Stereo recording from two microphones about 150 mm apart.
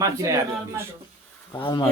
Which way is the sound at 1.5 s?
30° left (ahead or behind).